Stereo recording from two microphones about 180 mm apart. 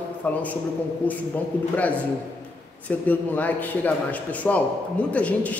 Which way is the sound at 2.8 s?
10° left (ahead or behind).